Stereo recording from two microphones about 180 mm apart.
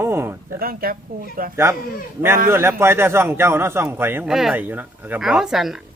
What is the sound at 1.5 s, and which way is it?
A man's voice, 15° right (ahead or behind).